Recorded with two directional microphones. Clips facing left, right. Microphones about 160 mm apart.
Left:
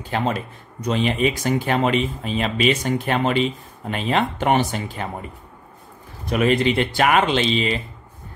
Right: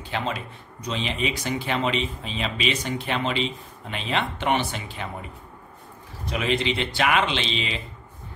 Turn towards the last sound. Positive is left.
turn(degrees=45)  # may be behind; listen again after turning